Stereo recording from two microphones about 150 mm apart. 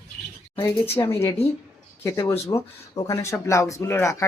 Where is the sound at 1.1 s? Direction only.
20° left (ahead or behind).